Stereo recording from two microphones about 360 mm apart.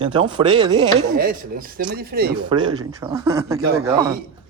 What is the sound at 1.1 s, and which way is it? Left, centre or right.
Speech, right.